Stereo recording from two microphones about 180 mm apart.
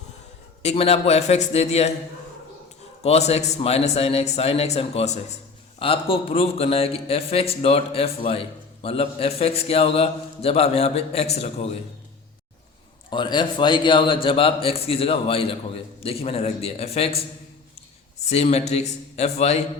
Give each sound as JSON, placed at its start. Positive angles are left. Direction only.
{"t": 0.6, "sound": "speech", "side_deg": 35}
{"t": 3.0, "sound": "speech", "side_deg": 35}
{"t": 13.1, "sound": "speech", "side_deg": 25}
{"t": 18.3, "sound": "speech", "side_deg": 35}